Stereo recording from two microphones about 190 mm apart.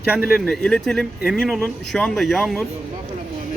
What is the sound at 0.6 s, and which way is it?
Speech, 5° left (ahead or behind).